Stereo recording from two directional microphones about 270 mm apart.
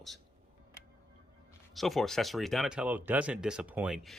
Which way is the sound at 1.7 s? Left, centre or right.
Centre.